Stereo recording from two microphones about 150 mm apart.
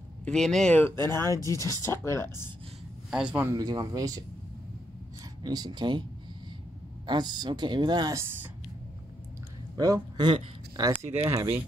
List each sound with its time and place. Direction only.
0.2 s speech: 5° left (ahead or behind)
1.1 s speech: 20° left (ahead or behind)
3.1 s a man's voice: 5° right (ahead or behind)
3.5 s speech: 25° right (ahead or behind)
5.4 s speech: 25° right (ahead or behind)
7.1 s speech: 30° right (ahead or behind)
9.8 s speech: 25° right (ahead or behind)
11.0 s speech: 15° right (ahead or behind)